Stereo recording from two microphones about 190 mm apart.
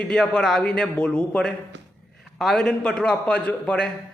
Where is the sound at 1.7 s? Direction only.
70° right (ahead or behind).